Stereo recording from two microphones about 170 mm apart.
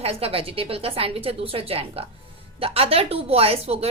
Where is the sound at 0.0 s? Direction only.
35° right (ahead or behind).